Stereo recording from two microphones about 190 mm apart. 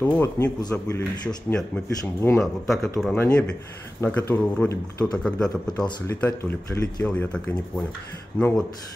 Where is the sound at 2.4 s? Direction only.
Centre (ahead or behind).